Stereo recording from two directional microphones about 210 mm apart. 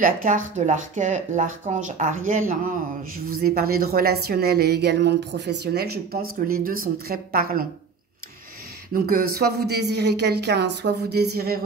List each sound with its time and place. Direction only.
0.0 s a woman's voice: 40° right (ahead or behind)
8.9 s a woman's voice: 45° right (ahead or behind)